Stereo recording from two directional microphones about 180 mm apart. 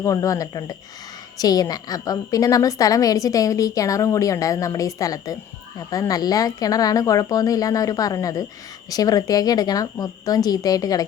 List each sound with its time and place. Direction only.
0.0 s a woman's voice: 20° left (ahead or behind)